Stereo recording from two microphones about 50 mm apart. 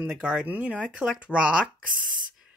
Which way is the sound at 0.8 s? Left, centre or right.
Centre.